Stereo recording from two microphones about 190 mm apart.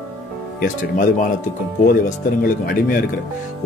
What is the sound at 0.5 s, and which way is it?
Speech, 45° left (ahead or behind).